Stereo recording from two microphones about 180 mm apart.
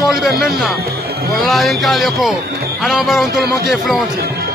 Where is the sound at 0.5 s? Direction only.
Centre (ahead or behind).